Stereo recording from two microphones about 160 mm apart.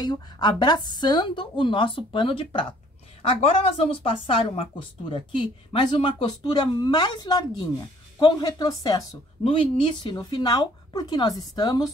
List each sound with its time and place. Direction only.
0.0 s speech: 25° left (ahead or behind)